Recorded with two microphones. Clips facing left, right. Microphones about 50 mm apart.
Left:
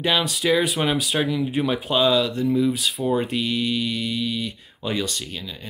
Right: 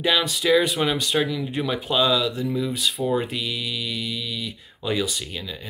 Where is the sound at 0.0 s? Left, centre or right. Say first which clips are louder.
Even; centre.